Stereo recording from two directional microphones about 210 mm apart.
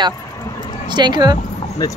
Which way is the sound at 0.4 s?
20° left (ahead or behind).